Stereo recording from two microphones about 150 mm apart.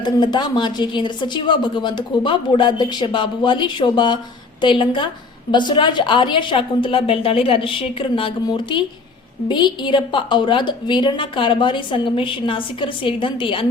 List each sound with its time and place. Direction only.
0.0 s a woman's voice: 30° left (ahead or behind)